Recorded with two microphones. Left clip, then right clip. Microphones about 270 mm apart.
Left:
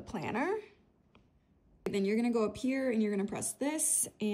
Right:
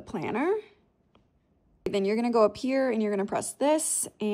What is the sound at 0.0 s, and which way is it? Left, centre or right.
Speech, centre.